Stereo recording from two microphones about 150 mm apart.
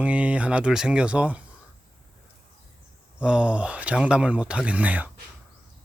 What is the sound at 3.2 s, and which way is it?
Speech, 5° right (ahead or behind).